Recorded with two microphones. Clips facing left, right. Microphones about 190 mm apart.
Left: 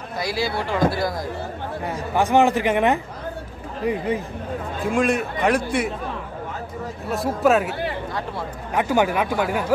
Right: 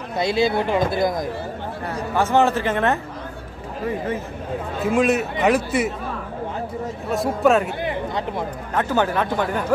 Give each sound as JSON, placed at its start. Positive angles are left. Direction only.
{"t": 0.2, "sound": "speech", "side_deg": -20}
{"t": 1.9, "sound": "a man's voice", "side_deg": 15}
{"t": 4.8, "sound": "a man's voice", "side_deg": -5}
{"t": 7.1, "sound": "a man's voice", "side_deg": 0}
{"t": 7.8, "sound": "a sound", "side_deg": -20}
{"t": 8.7, "sound": "a man's voice", "side_deg": 10}